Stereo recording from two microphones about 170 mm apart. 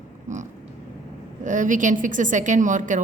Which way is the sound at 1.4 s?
50° right (ahead or behind).